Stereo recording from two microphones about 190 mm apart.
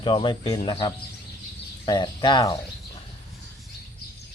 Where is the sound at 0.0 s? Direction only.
25° left (ahead or behind).